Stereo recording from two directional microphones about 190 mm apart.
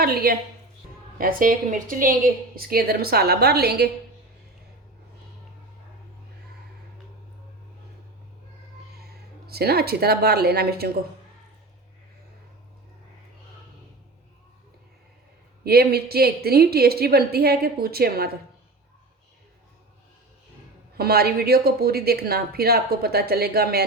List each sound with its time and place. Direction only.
0.0 s a woman's voice: 50° right (ahead or behind)
9.5 s speech: 55° right (ahead or behind)
15.6 s speech: 55° right (ahead or behind)
21.0 s speech: 55° right (ahead or behind)